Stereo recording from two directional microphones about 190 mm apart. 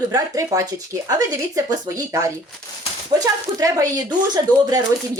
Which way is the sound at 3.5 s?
20° right (ahead or behind).